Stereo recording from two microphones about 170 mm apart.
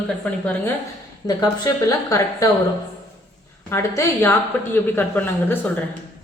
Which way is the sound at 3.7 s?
15° left (ahead or behind).